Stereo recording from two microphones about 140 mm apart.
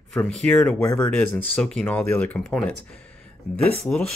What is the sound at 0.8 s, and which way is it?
Speech, 20° left (ahead or behind).